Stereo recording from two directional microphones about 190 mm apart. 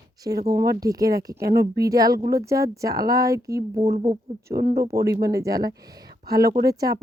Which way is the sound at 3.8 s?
30° right (ahead or behind).